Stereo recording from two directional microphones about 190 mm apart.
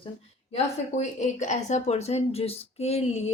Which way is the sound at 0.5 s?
40° left (ahead or behind).